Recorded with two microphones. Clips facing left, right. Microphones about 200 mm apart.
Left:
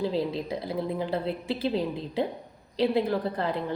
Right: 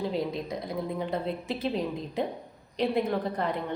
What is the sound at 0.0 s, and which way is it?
A woman's voice, 30° left (ahead or behind).